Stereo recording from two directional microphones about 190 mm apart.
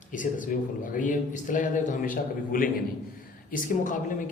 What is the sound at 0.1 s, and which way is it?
A man's voice, 45° left (ahead or behind).